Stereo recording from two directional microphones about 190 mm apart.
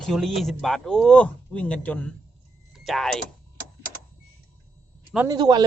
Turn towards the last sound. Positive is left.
turn(degrees=-20)  # may be behind; listen again after turning